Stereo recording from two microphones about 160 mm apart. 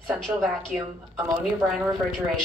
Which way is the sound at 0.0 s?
Centre (ahead or behind).